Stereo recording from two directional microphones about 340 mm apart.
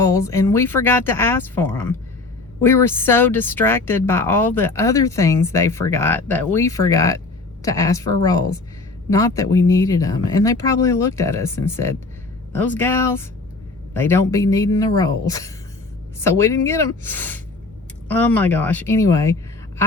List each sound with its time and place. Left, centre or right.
0.0 s speech: centre